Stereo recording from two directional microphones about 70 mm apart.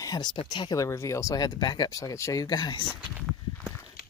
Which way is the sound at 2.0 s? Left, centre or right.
Left.